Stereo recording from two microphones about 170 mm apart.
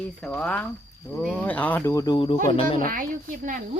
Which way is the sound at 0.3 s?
10° left (ahead or behind).